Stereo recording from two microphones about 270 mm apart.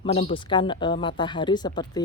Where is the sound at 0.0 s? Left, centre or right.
Left.